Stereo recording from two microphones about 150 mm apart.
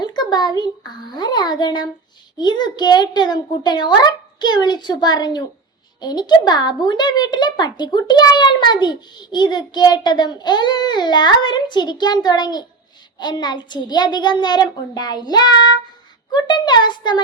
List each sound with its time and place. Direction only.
0.0 s a child's voice: 30° left (ahead or behind)